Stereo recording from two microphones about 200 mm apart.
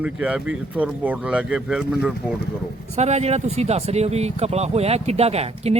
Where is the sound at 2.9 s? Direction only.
35° right (ahead or behind).